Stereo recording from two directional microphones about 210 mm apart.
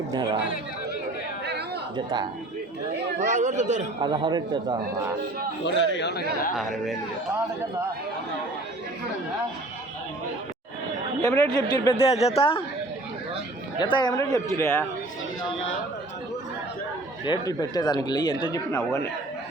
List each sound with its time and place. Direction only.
2.0 s speech: 20° right (ahead or behind)
3.2 s speech: 35° right (ahead or behind)
4.0 s speech: 20° right (ahead or behind)
5.6 s a man's voice: 55° left (ahead or behind)
6.6 s speech: centre (ahead or behind)
11.2 s speech: 15° left (ahead or behind)
13.7 s speech: 20° left (ahead or behind)
17.2 s speech: 20° left (ahead or behind)
18.8 s speech: 5° left (ahead or behind)